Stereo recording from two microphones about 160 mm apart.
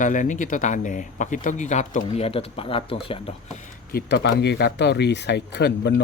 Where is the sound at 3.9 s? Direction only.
80° left.